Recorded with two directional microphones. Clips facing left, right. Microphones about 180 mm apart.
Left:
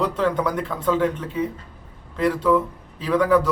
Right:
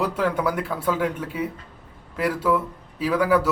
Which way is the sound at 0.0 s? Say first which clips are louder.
Left 1 dB; 10° right (ahead or behind).